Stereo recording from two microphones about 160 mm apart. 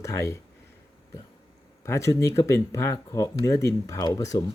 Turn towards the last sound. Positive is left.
turn(degrees=20)  # may be behind; listen again after turning